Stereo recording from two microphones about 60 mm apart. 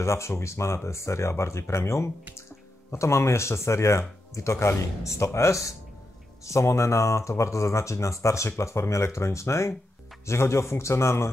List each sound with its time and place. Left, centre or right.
0.0 s speech: left